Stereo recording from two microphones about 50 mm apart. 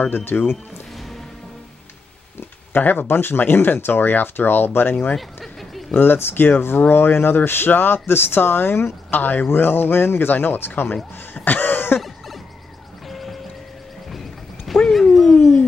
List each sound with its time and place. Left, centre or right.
0.0 s speech: left
2.7 s speech: left
5.1 s a sound: centre
5.9 s speech: left
9.2 s speech: left
11.4 s cough: left
13.1 s music: centre
14.9 s a sound: centre